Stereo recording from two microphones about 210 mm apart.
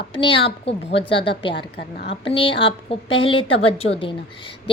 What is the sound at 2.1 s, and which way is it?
A woman's voice, 25° left (ahead or behind).